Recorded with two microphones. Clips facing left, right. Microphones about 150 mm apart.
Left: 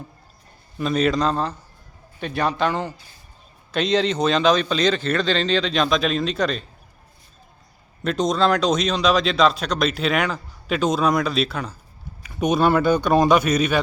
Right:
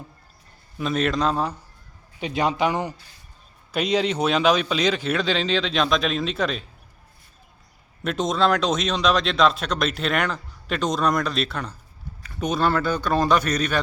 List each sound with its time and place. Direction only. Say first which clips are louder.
0.8 s speech: left 3 dB; centre (ahead or behind)
2.2 s a man's voice: even; 15° right (ahead or behind)
8.0 s speech: left 2 dB; centre (ahead or behind)
12.2 s speech: left 4 dB; 15° left (ahead or behind)